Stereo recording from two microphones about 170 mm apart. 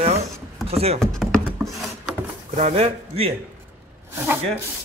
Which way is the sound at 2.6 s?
40° right (ahead or behind).